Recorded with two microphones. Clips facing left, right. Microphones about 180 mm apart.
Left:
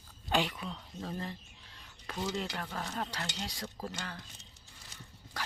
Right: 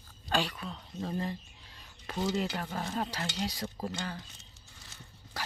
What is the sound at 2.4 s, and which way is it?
Speech, 5° right (ahead or behind).